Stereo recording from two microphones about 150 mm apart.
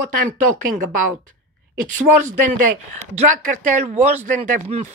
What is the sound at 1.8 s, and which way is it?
Speech, 55° right (ahead or behind).